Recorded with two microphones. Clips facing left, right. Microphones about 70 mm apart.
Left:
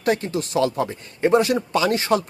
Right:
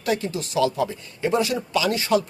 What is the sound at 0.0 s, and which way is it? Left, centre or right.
A man's voice, left.